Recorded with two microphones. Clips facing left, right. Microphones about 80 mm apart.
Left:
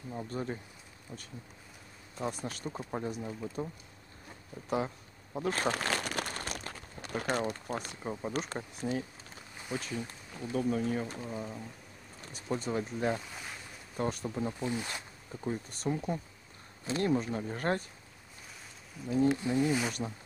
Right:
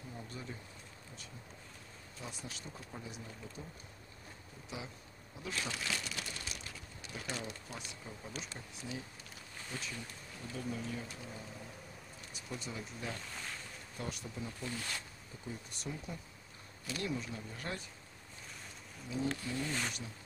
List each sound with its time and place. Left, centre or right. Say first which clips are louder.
0.1 s speech: left 11 dB; left
2.1 s speech: left 11 dB; left
4.6 s speech: left 14 dB; left
9.7 s speech: left 8 dB; centre
10.5 s speech: left 10 dB; left
13.1 s speech: left 7 dB; centre
13.9 s speech: left 10 dB; left
14.6 s speech: left 7 dB; left
15.4 s speech: left 10 dB; left
19.2 s speech: left 10 dB; left